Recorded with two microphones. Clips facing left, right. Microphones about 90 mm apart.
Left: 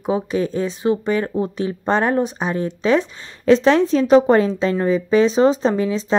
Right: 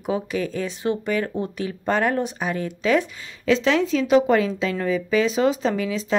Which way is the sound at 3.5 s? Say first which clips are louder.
Left 6 dB; 40° left (ahead or behind).